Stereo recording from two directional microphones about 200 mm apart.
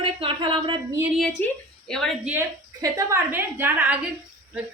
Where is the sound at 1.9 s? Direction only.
Centre (ahead or behind).